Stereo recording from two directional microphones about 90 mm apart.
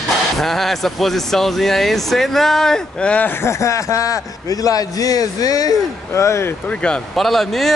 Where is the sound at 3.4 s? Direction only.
35° left (ahead or behind).